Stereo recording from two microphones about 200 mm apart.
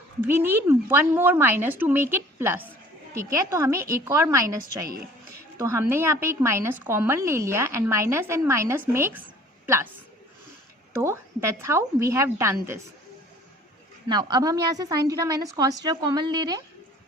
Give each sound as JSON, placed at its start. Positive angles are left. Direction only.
{"t": 0.3, "sound": "a woman's voice", "side_deg": -10}
{"t": 11.0, "sound": "a woman's voice", "side_deg": -15}
{"t": 14.1, "sound": "a woman's voice", "side_deg": -20}